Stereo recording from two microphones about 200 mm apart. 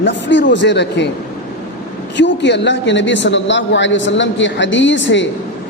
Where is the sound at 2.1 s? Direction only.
65° left (ahead or behind).